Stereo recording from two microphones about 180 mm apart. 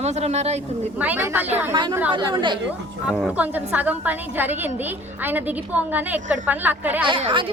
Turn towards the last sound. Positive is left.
turn(degrees=-30)  # may be behind; listen again after turning